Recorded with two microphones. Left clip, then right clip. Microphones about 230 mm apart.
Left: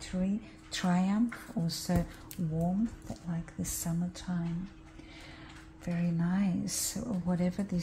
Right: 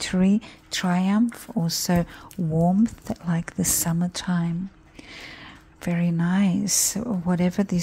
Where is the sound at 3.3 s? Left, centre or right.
Right.